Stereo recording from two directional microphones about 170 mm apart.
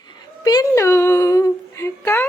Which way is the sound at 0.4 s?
20° left (ahead or behind).